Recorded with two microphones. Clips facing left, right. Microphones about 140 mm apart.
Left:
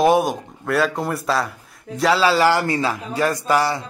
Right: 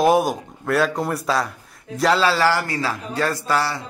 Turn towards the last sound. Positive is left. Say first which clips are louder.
# left 3 dB
turn(degrees=15)  # may be behind; listen again after turning